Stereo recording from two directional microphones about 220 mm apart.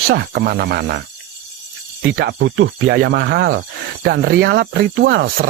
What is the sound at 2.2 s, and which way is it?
Speech, 50° right (ahead or behind).